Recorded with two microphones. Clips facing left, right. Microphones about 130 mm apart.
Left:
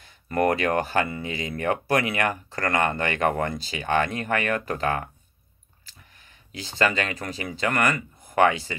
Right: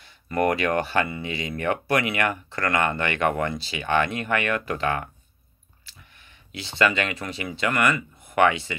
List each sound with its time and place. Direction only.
0.0 s speech: 50° left (ahead or behind)
5.9 s a sound: 45° left (ahead or behind)
6.8 s speech: 40° left (ahead or behind)